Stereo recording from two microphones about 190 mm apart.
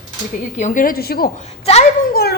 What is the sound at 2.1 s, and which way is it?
Speech, 50° left (ahead or behind).